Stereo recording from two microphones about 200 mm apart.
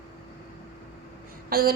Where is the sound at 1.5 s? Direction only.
50° right (ahead or behind).